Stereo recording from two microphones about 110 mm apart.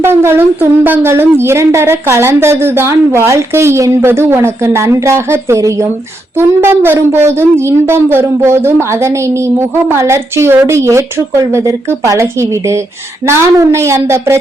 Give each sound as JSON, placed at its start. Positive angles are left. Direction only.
{"t": 0.0, "sound": "speech", "side_deg": -20}